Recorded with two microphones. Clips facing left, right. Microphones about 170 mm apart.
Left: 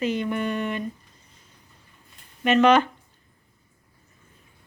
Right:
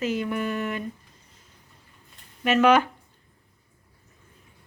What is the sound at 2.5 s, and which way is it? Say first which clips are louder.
Speech: left 1 dB; 5° right (ahead or behind).